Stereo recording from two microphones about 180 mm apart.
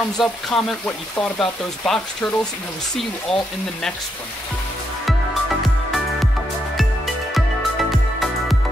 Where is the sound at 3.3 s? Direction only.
Centre (ahead or behind).